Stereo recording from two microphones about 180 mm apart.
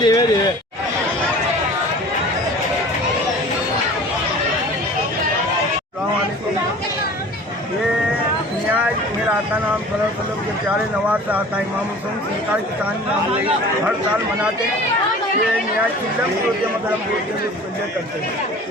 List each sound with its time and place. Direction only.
0.0 s speech: 20° left (ahead or behind)
11.1 s speech: 10° right (ahead or behind)